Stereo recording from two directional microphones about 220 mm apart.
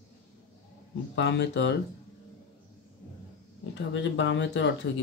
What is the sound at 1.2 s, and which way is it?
Speech, 50° left (ahead or behind).